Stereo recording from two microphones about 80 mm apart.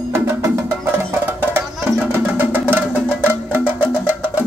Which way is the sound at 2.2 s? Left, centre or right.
Right.